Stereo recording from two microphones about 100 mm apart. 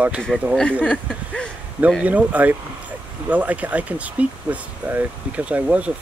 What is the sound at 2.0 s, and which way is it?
Speech, 15° right (ahead or behind).